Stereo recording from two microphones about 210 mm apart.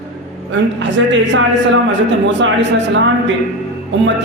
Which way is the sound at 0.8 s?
60° right (ahead or behind).